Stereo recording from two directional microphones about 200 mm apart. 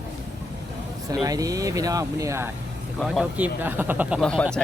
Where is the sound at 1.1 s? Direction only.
15° right (ahead or behind); by 4.4 s 5° left (ahead or behind).